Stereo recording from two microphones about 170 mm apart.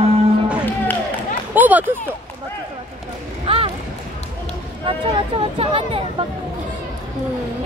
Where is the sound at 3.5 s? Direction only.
35° right (ahead or behind).